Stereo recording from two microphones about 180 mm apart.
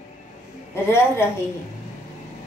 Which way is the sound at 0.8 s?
15° left (ahead or behind).